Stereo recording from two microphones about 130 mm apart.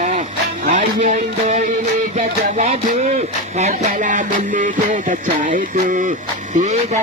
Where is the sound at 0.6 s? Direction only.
75° right (ahead or behind).